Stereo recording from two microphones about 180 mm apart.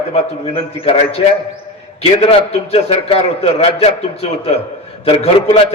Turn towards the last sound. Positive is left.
turn(degrees=35)  # may be behind; listen again after turning